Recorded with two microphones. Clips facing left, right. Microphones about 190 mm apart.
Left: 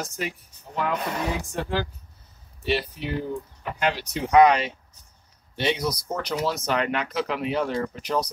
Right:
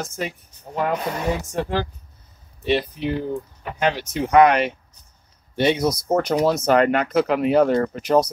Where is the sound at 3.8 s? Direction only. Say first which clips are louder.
Right 4 dB; 55° right (ahead or behind).